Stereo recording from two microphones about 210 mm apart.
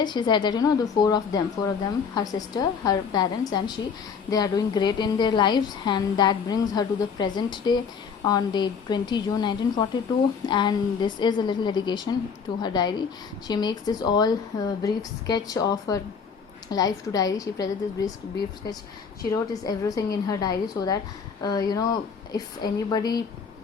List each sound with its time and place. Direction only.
0.0 s a woman's voice: 20° left (ahead or behind)
19.6 s a woman's voice: 15° left (ahead or behind)